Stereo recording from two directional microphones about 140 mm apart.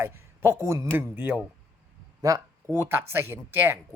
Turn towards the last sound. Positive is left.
turn(degrees=-15)  # may be behind; listen again after turning